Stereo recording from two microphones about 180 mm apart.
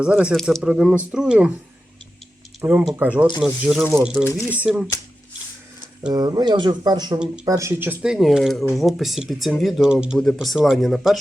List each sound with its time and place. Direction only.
0.0 s speech: 5° right (ahead or behind)
2.6 s speech: 10° right (ahead or behind)
6.1 s speech: 20° right (ahead or behind); by 11.2 s centre (ahead or behind)